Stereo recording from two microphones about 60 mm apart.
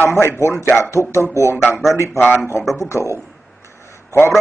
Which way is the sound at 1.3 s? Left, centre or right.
Left.